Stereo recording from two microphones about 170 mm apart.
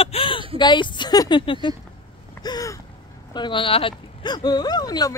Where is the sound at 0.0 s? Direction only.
30° left (ahead or behind).